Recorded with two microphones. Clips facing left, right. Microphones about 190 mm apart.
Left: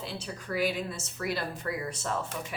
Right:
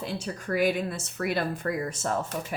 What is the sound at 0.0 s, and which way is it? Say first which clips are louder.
A woman's voice: right 5 dB; 50° right (ahead or behind).